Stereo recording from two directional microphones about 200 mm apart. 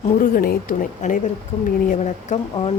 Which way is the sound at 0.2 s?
45° left (ahead or behind).